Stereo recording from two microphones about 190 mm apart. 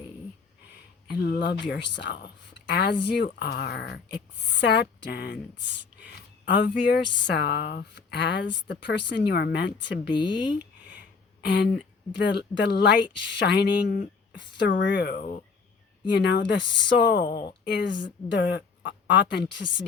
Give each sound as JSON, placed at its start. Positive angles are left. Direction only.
{"t": 1.0, "sound": "speech", "side_deg": 60}
{"t": 11.3, "sound": "speech", "side_deg": 60}
{"t": 16.1, "sound": "speech", "side_deg": 65}